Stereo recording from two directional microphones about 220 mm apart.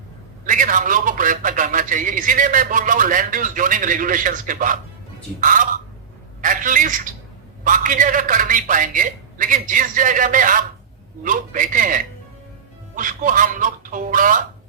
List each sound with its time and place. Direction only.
0.4 s a man's voice: 35° right (ahead or behind)